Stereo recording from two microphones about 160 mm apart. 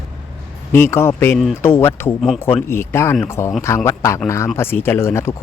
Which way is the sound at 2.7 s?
15° left (ahead or behind).